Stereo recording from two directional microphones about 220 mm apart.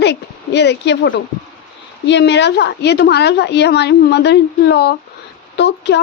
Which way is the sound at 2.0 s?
50° left (ahead or behind).